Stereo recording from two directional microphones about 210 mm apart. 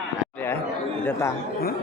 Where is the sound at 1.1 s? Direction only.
10° left (ahead or behind).